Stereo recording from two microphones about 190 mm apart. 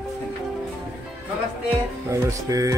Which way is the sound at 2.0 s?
15° right (ahead or behind).